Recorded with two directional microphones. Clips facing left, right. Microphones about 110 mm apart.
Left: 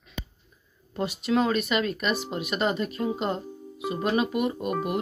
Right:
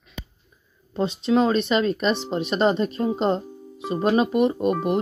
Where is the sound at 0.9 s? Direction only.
25° right (ahead or behind).